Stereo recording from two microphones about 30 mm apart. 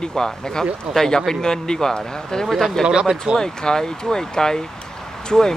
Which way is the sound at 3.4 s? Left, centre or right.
Left.